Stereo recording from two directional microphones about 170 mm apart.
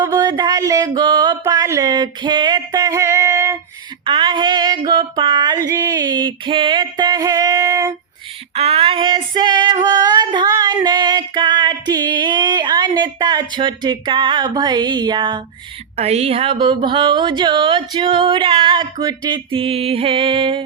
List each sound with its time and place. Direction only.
0.0 s a sound: 20° right (ahead or behind)
4.0 s female singing: 30° right (ahead or behind)
4.9 s speech: 25° right (ahead or behind)
8.5 s female singing: 35° right (ahead or behind)
16.0 s speech: 40° right (ahead or behind)